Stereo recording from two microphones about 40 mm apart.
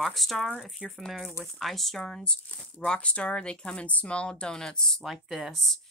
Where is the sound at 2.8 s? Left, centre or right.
Left.